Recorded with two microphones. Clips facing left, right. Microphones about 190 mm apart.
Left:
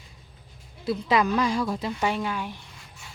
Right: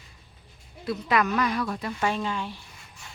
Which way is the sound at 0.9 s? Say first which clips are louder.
Left 2 dB; 25° left (ahead or behind).